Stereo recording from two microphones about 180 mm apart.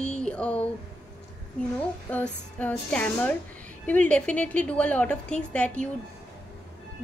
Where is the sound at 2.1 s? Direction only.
10° left (ahead or behind).